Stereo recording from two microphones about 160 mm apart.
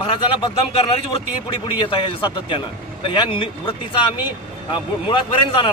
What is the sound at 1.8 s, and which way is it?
Speech, 30° left (ahead or behind).